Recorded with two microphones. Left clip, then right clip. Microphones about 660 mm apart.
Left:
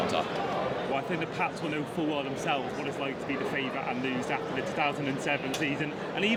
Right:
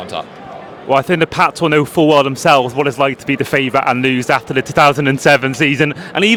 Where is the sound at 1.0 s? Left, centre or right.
Right.